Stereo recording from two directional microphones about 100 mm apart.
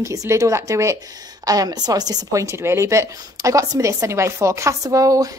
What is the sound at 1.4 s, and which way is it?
Speech, 40° right (ahead or behind).